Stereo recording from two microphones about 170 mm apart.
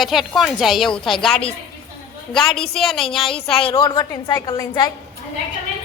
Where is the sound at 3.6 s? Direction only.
30° left (ahead or behind).